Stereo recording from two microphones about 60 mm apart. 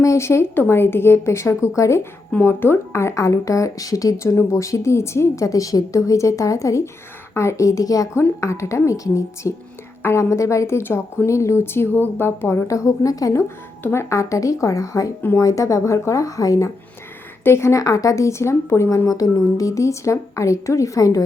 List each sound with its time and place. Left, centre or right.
0.0 s speech: left
2.4 s a woman's voice: left
8.4 s a woman's voice: left
12.6 s a woman's voice: left
13.8 s a woman's voice: left
17.4 s speech: left
19.0 s a woman's voice: left